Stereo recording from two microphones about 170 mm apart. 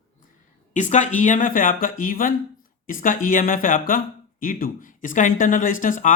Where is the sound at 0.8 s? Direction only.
45° left (ahead or behind).